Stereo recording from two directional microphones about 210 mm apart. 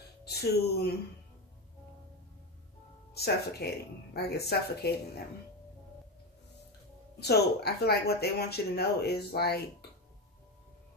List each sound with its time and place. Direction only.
0.2 s speech: 50° left (ahead or behind)
3.2 s speech: 50° left (ahead or behind)
7.2 s speech: 50° left (ahead or behind)